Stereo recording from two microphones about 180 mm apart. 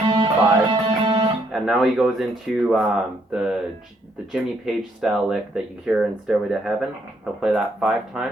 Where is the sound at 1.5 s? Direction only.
Centre (ahead or behind).